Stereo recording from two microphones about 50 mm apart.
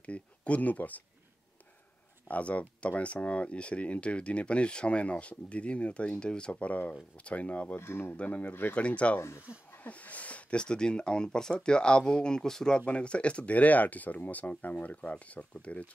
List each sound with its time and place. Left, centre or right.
0.0 s speech: left
2.2 s speech: left
7.7 s speech: left
8.3 s speech: left
8.7 s speech: left
12.7 s speech: left